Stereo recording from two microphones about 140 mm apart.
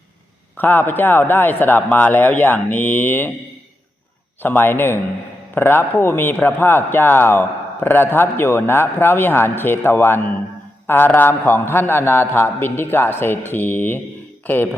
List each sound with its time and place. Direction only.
0.5 s a man's voice: 15° left (ahead or behind)
4.4 s a man's voice: 15° left (ahead or behind)